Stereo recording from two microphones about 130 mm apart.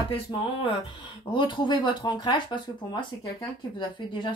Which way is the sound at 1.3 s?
35° left (ahead or behind).